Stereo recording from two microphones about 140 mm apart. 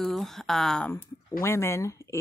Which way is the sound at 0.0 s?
Centre (ahead or behind).